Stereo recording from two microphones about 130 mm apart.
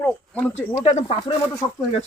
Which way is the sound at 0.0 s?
10° left (ahead or behind).